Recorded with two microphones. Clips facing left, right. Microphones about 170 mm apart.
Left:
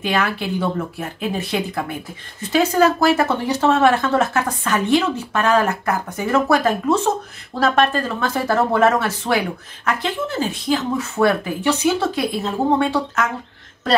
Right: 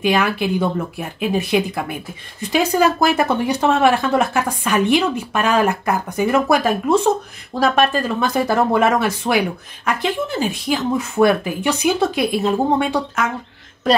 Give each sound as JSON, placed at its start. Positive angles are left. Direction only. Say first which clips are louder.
{"t": 0.0, "sound": "speech", "louder": "right 4 dB", "side_deg": -15}